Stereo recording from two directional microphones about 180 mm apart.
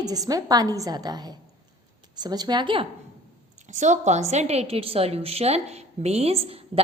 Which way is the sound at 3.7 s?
40° right (ahead or behind).